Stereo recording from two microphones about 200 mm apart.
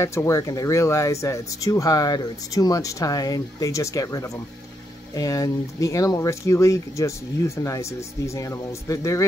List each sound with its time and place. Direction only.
0.0 s speech: 15° left (ahead or behind)